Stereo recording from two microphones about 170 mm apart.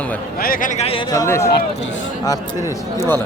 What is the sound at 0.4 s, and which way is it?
Speech, 55° left (ahead or behind).